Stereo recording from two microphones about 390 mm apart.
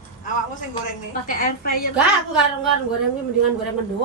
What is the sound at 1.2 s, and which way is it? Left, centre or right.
Speech, left.